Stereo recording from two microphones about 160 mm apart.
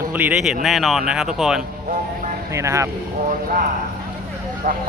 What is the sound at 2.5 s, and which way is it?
Speech, 20° right (ahead or behind).